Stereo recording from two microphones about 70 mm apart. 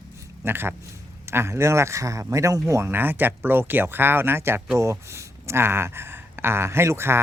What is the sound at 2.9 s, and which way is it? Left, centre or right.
Speech, right.